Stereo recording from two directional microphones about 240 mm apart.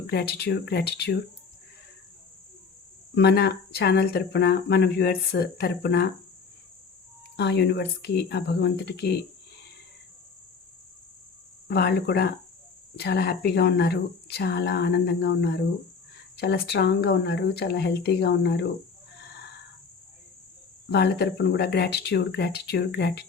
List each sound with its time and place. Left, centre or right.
0.1 s speech: left
3.2 s speech: left
7.3 s speech: left
11.7 s speech: left
20.9 s speech: left